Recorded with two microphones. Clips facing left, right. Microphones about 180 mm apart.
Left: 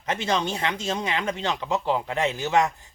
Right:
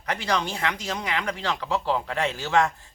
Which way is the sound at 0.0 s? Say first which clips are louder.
Left 1 dB; 25° left (ahead or behind).